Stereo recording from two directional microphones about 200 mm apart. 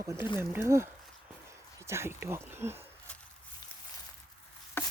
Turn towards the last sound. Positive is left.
turn(degrees=10)  # may be behind; listen again after turning